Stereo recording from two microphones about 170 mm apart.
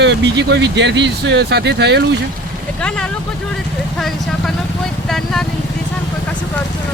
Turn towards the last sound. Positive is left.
turn(degrees=0)  # may be behind; listen again after turning